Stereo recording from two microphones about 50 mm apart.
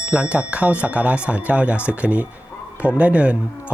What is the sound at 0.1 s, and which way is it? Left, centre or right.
Speech, right.